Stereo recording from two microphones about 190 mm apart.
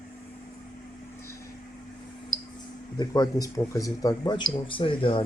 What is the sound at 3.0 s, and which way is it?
Speech, 20° left (ahead or behind).